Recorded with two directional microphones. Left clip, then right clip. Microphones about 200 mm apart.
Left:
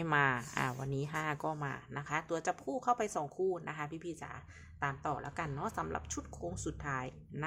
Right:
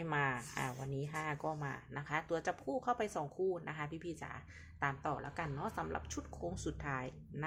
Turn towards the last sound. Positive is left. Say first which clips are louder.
# left 3 dB
turn(degrees=10)  # may be behind; listen again after turning